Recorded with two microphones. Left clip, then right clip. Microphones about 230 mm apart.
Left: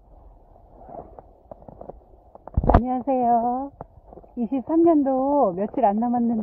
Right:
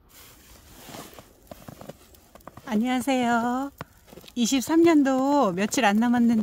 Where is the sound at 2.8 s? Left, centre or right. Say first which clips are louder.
Left 3 dB; right.